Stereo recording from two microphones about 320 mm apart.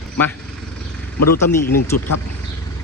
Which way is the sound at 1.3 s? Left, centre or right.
Centre.